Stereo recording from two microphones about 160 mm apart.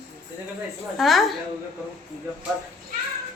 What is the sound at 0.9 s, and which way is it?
Speech, centre (ahead or behind).